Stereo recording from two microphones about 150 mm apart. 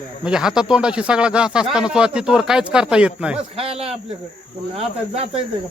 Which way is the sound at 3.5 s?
40° right (ahead or behind).